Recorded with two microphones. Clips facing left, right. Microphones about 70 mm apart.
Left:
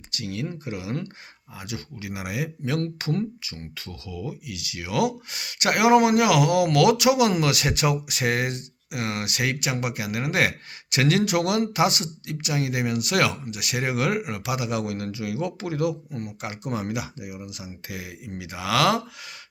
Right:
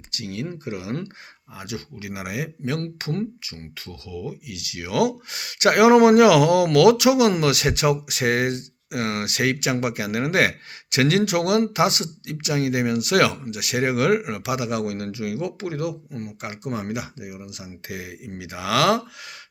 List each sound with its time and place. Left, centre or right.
0.1 s speech: right
1.5 s speech: right
6.7 s speech: right
10.9 s speech: right
17.8 s speech: right